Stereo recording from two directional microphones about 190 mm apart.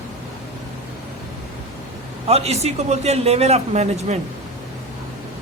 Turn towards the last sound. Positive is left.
turn(degrees=-35)  # may be behind; listen again after turning